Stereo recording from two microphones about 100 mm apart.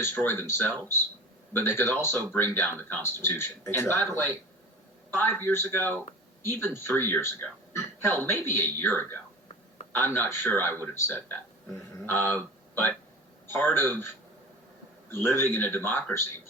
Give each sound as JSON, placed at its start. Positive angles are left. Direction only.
{"t": 0.0, "sound": "speech", "side_deg": 20}
{"t": 15.1, "sound": "speech", "side_deg": 25}